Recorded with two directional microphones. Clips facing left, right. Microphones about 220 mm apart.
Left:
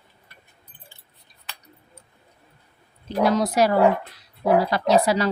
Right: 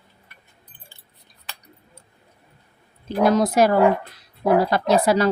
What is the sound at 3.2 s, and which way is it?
Speech, 50° right (ahead or behind).